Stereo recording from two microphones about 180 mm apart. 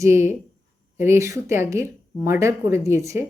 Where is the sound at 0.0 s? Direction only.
15° right (ahead or behind).